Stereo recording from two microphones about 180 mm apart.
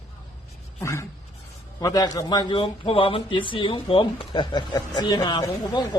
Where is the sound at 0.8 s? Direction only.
15° left (ahead or behind).